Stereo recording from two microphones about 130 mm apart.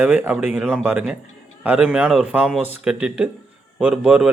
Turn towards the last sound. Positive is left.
turn(degrees=-5)  # may be behind; listen again after turning